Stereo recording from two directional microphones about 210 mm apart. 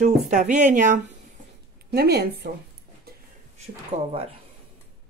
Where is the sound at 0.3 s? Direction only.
35° right (ahead or behind).